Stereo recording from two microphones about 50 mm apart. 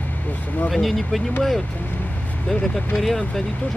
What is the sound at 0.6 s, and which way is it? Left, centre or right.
Speech, centre.